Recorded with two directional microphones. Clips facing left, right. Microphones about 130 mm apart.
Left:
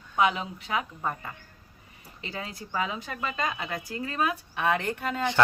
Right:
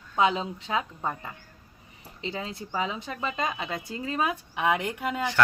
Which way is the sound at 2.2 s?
20° right (ahead or behind).